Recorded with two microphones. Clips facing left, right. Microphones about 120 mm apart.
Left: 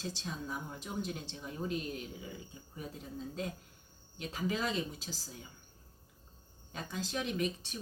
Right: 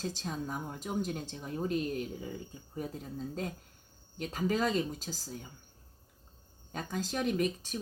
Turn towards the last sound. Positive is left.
turn(degrees=-45)  # may be behind; listen again after turning